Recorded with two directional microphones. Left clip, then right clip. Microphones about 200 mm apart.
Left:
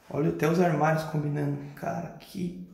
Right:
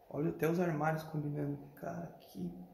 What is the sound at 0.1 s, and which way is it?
Speech, 20° right (ahead or behind).